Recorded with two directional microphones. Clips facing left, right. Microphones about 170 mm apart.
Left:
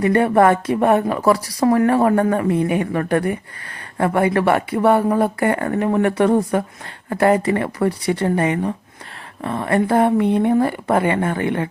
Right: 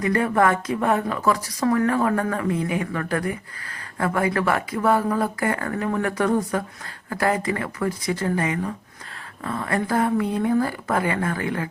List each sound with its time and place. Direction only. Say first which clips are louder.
0.0 s a woman's voice: left 6 dB; 30° left (ahead or behind)